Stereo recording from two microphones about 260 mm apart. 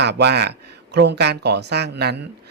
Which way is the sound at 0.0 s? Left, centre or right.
Right.